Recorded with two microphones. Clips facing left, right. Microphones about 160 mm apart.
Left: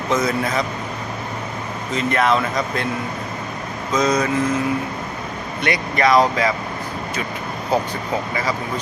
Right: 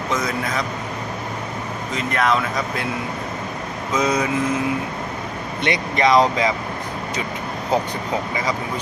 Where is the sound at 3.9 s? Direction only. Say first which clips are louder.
Left 2 dB; 10° right (ahead or behind).